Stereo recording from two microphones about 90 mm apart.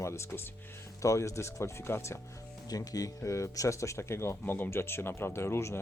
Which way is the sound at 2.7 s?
40° left (ahead or behind).